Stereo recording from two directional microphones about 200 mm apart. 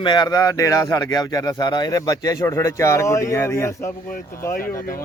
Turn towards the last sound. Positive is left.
turn(degrees=45)  # may be behind; listen again after turning